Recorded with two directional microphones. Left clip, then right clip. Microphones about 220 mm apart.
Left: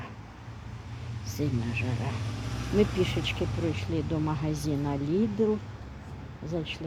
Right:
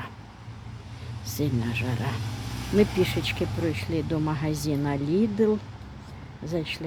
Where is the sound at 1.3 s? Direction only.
20° right (ahead or behind).